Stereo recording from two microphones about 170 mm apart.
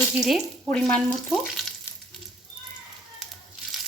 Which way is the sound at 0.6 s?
10° left (ahead or behind).